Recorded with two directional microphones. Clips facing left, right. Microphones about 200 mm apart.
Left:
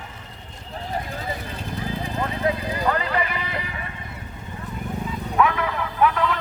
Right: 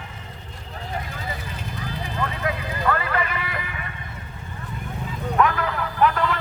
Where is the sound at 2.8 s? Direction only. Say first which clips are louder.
Even; 20° left (ahead or behind).